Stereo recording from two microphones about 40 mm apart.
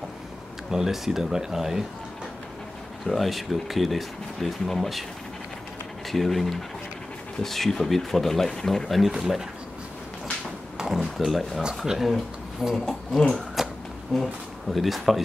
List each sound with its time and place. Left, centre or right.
0.7 s speech: centre
3.1 s speech: centre
6.0 s speech: centre
9.2 s speech: centre
10.8 s a sound: centre
11.1 s speech: centre
11.8 s speech: centre
12.6 s speech: centre
13.6 s a sound: centre
14.1 s speech: centre